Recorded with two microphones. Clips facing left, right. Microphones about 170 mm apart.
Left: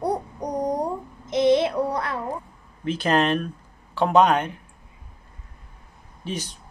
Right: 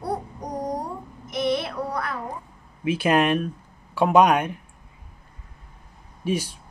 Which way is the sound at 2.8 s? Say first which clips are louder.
Right 1 dB; 10° right (ahead or behind).